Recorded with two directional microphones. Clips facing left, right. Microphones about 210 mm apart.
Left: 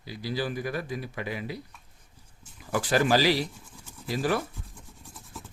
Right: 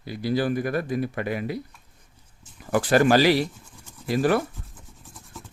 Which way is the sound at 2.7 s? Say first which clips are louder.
Right 5 dB; 55° right (ahead or behind).